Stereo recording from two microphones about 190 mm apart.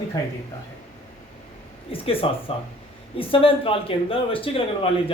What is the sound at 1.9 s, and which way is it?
Speech, 30° left (ahead or behind).